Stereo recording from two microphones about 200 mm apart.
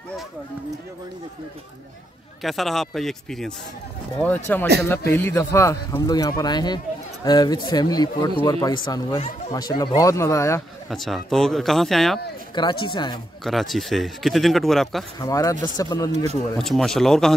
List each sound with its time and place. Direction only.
2.4 s speech: centre (ahead or behind)
10.9 s speech: centre (ahead or behind)
12.5 s speech: 25° left (ahead or behind)
13.4 s speech: centre (ahead or behind)
15.1 s speech: 15° left (ahead or behind)
16.5 s speech: centre (ahead or behind)